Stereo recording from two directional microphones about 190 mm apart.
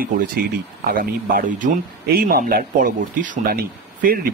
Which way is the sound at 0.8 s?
50° right (ahead or behind).